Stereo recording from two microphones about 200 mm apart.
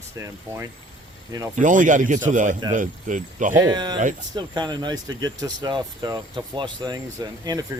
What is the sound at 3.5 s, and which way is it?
Speech, 15° right (ahead or behind).